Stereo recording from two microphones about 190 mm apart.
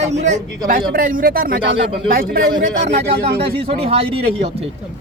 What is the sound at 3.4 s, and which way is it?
Speech, 30° right (ahead or behind).